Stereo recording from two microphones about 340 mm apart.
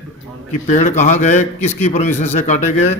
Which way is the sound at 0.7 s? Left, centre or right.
Left.